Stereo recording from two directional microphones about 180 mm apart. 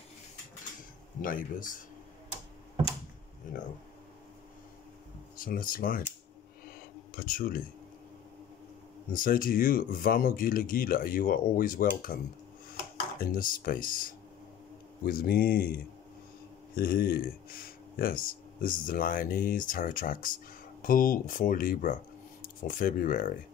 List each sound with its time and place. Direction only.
1.2 s speech: 50° left (ahead or behind)
3.4 s speech: 45° left (ahead or behind)
5.4 s speech: 50° left (ahead or behind)
7.1 s speech: 55° left (ahead or behind)
9.1 s speech: 50° left (ahead or behind)
13.2 s speech: 50° left (ahead or behind)